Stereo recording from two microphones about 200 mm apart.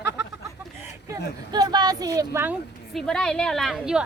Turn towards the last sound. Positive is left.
turn(degrees=0)  # may be behind; listen again after turning